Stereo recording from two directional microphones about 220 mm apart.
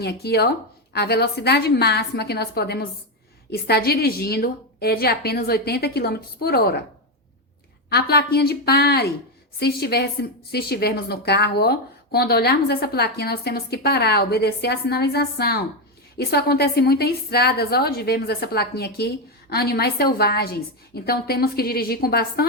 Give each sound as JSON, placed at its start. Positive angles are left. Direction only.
{"t": 0.0, "sound": "a woman's voice", "side_deg": 45}
{"t": 7.9, "sound": "a woman's voice", "side_deg": 45}